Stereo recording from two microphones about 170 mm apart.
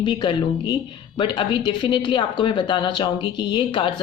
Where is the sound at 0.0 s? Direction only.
30° left (ahead or behind).